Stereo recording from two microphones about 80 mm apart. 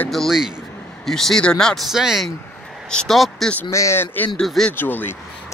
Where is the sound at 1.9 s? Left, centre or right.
Centre.